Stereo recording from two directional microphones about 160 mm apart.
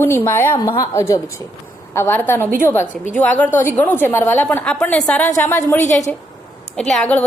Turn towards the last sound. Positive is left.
turn(degrees=10)  # may be behind; listen again after turning